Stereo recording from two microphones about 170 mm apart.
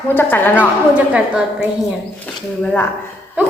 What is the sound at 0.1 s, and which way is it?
Speech, 10° left (ahead or behind).